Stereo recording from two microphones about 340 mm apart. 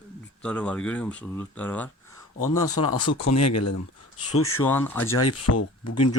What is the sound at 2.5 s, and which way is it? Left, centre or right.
Speech, left.